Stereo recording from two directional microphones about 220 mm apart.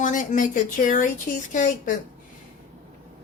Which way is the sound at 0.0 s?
35° left (ahead or behind).